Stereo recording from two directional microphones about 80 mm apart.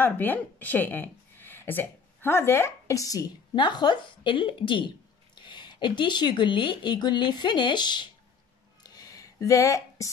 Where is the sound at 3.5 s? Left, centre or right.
Left.